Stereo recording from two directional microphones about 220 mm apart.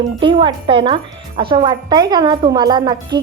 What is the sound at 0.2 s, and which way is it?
A woman's voice, 20° right (ahead or behind).